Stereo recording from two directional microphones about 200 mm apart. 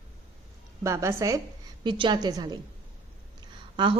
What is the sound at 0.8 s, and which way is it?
A woman's voice, 15° right (ahead or behind).